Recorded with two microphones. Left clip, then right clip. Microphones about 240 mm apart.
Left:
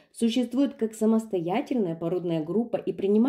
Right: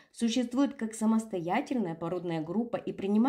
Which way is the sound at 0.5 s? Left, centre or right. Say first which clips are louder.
Left 4 dB; right.